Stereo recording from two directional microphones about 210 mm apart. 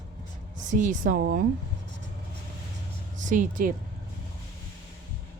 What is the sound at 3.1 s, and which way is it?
Speech, 35° right (ahead or behind).